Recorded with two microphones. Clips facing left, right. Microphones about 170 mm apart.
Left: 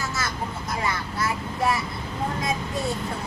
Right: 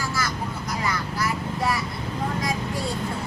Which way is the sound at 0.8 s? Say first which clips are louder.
Right 1 dB; 25° left (ahead or behind).